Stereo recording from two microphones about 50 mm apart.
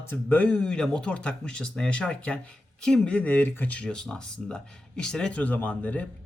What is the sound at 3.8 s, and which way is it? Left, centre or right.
Speech, centre.